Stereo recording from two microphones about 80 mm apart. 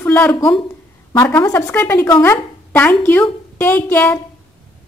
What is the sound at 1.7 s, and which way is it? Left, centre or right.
A woman's voice, left.